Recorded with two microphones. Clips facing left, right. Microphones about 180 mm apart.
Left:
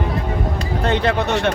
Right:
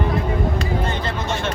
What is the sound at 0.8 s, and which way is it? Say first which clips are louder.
Speech: left 7 dB; 70° left (ahead or behind).